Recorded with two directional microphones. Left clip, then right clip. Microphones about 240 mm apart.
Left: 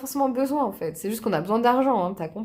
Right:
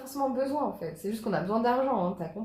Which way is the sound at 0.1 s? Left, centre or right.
Left.